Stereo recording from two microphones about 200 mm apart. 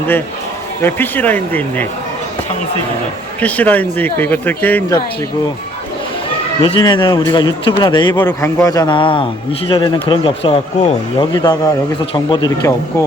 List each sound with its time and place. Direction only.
0.8 s speech: 10° left (ahead or behind)
3.4 s speech: 10° left (ahead or behind)
6.6 s a man's voice: 20° left (ahead or behind)
11.2 s a man's voice: 20° left (ahead or behind)